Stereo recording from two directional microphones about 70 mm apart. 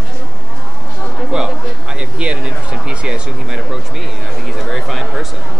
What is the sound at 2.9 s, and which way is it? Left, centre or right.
Speech, centre.